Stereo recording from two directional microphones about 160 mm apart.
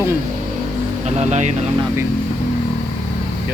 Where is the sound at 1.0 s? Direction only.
45° right (ahead or behind).